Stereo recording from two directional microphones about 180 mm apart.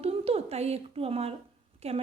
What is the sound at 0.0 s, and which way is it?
A woman's voice, 35° right (ahead or behind).